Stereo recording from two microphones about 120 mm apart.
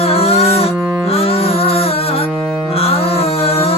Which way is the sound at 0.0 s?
55° left (ahead or behind).